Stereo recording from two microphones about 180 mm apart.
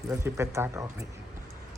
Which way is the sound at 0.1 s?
15° right (ahead or behind).